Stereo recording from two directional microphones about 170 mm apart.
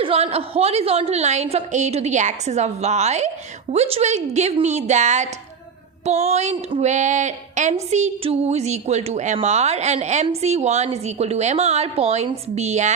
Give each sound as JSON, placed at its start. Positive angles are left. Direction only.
{"t": 0.0, "sound": "a woman's voice", "side_deg": -35}